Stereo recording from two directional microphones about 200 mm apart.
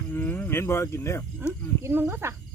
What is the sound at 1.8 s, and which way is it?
Speech, 10° right (ahead or behind).